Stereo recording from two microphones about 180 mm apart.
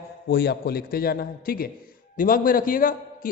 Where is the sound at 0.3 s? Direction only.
65° left (ahead or behind).